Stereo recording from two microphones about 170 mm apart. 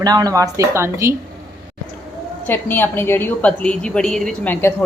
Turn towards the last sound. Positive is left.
turn(degrees=15)  # may be behind; listen again after turning